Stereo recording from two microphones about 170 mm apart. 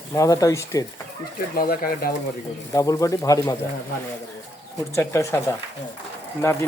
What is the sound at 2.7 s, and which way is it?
Speech, 20° left (ahead or behind).